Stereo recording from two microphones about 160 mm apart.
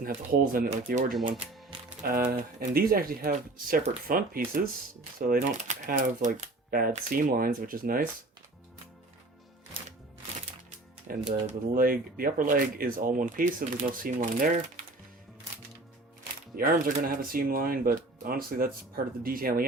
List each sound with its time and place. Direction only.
0.0 s speech: 60° right (ahead or behind)
1.7 s music: 35° right (ahead or behind)
2.6 s speech: 70° right (ahead or behind)
5.3 s speech: 50° right (ahead or behind)
11.1 s speech: 55° right (ahead or behind)
11.8 s speech: 65° right (ahead or behind)
16.6 s speech: 65° right (ahead or behind)